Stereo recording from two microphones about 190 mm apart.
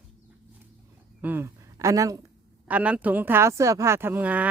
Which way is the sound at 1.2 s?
10° right (ahead or behind).